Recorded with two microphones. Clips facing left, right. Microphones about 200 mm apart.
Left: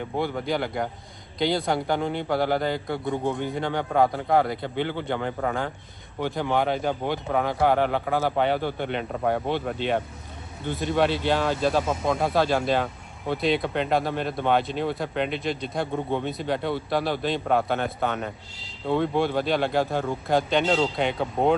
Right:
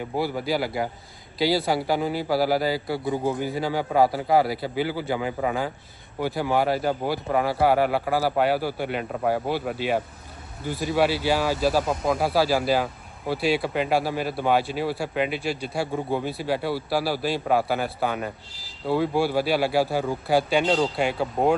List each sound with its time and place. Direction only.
0.0 s speech: 5° right (ahead or behind)